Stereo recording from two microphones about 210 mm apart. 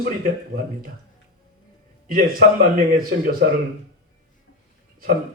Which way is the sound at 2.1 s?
45° right (ahead or behind).